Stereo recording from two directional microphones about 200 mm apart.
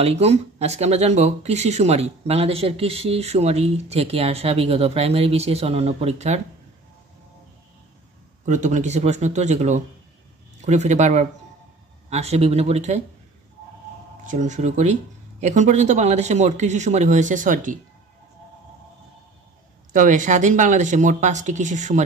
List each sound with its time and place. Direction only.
0.0 s speech: 30° right (ahead or behind)
8.5 s speech: 35° right (ahead or behind)
14.2 s speech: 40° right (ahead or behind)
19.9 s speech: 40° right (ahead or behind)